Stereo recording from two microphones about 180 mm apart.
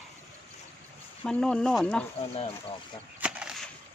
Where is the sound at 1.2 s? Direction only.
5° left (ahead or behind).